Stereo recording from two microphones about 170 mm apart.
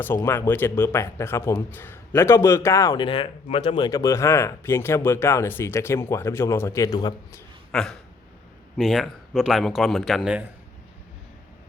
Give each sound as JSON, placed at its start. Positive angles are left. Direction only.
{"t": 0.0, "sound": "speech", "side_deg": 10}
{"t": 7.7, "sound": "a sound", "side_deg": 5}
{"t": 8.8, "sound": "speech", "side_deg": 0}